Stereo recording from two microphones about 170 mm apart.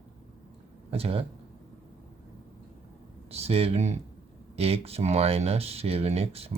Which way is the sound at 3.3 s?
35° right (ahead or behind).